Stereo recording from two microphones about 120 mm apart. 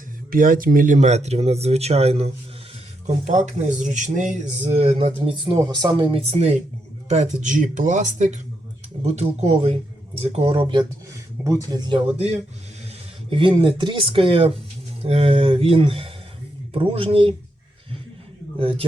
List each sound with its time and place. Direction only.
0.9 s speech: 75° right (ahead or behind); by 2.3 s 60° right (ahead or behind)
3.2 s speech: 90° right
4.6 s speech: 65° right (ahead or behind)
5.3 s speech: 40° right (ahead or behind); by 6.6 s 60° right (ahead or behind)
7.1 s speech: 70° right (ahead or behind); by 8.4 s 90° right
9.0 s speech: 60° right (ahead or behind); by 10.8 s 45° right (ahead or behind)
11.4 s speech: 30° right (ahead or behind)
13.3 s speech: 45° right (ahead or behind)
18.6 s speech: 50° right (ahead or behind)